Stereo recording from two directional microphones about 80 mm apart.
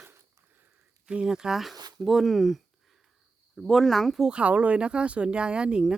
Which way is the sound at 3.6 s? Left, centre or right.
Centre.